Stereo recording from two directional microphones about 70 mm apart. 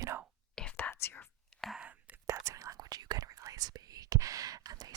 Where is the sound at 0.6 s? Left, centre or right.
Centre.